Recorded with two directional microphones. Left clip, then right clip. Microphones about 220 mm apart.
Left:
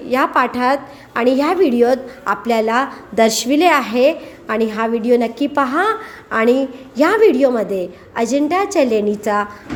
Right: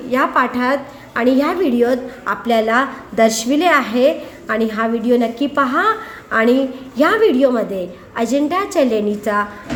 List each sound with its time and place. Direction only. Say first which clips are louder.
0.1 s a woman's voice: even; 30° left (ahead or behind)